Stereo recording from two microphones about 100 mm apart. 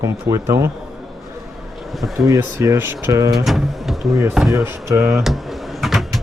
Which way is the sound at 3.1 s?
35° right (ahead or behind).